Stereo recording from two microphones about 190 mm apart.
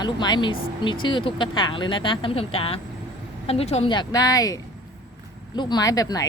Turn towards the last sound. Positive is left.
turn(degrees=20)  # may be behind; listen again after turning